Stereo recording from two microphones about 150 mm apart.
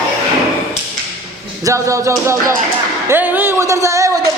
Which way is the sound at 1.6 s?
20° right (ahead or behind).